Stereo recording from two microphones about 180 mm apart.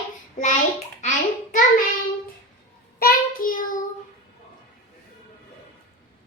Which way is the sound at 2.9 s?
55° left (ahead or behind).